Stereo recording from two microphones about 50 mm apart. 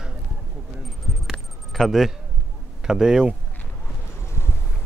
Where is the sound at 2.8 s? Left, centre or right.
Centre.